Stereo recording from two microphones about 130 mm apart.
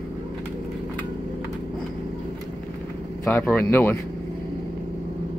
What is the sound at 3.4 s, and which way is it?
Speech, 15° left (ahead or behind).